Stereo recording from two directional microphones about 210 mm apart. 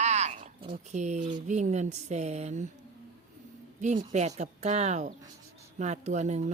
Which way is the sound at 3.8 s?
35° right (ahead or behind).